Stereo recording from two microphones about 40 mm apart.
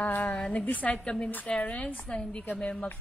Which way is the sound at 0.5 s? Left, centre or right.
Left.